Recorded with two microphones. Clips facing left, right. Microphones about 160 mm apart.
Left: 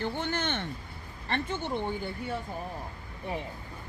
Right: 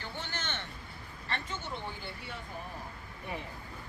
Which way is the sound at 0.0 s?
55° left (ahead or behind).